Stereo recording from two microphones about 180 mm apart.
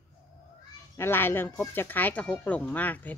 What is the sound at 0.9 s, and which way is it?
Speech, 10° left (ahead or behind).